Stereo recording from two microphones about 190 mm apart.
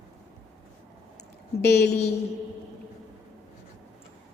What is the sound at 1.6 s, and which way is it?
Speech, 60° left (ahead or behind).